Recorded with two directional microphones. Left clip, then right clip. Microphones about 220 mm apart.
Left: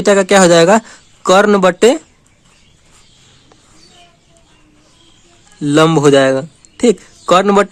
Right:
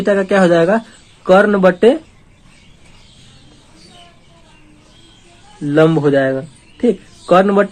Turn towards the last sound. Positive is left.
turn(degrees=55)  # may be behind; listen again after turning